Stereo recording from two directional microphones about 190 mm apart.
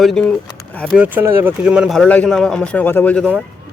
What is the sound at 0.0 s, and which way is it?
Speech, 5° left (ahead or behind).